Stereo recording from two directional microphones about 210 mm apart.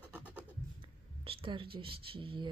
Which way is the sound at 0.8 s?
25° right (ahead or behind).